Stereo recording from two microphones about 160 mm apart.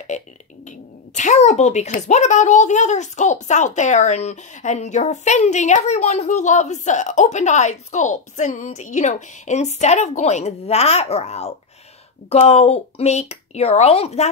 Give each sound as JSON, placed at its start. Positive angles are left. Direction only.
{"t": 0.1, "sound": "speech", "side_deg": 50}